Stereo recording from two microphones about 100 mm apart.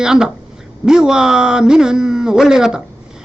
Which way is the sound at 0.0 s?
5° right (ahead or behind).